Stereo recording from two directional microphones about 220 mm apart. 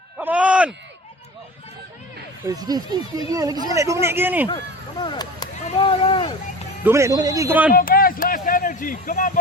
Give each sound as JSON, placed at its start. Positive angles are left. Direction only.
{"t": 0.2, "sound": "a sound", "side_deg": -5}
{"t": 2.5, "sound": "speech", "side_deg": -15}
{"t": 4.9, "sound": "speech", "side_deg": 20}
{"t": 6.8, "sound": "speech", "side_deg": -15}
{"t": 7.7, "sound": "speech", "side_deg": 40}